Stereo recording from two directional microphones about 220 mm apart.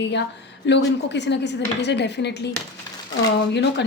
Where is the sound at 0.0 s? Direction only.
50° left (ahead or behind).